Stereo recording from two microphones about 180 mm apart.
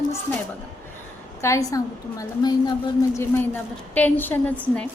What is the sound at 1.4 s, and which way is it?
A woman's voice, 20° left (ahead or behind).